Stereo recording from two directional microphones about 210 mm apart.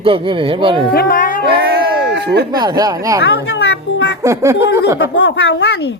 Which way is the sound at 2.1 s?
55° right (ahead or behind).